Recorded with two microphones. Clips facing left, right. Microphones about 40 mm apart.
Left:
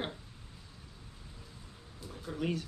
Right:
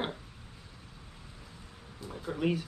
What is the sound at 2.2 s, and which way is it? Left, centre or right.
Speech, centre.